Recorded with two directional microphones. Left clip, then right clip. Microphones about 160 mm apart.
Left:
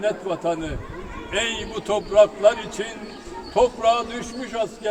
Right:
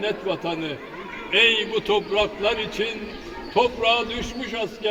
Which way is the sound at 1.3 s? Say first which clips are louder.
Right 7 dB; 15° left (ahead or behind).